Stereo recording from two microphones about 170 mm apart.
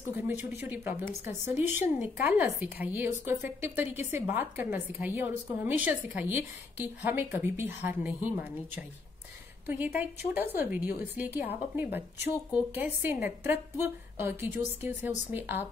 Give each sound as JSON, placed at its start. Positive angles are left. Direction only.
{"t": 0.1, "sound": "a woman's voice", "side_deg": -10}
{"t": 12.3, "sound": "speech", "side_deg": 20}
{"t": 12.7, "sound": "a woman's voice", "side_deg": -10}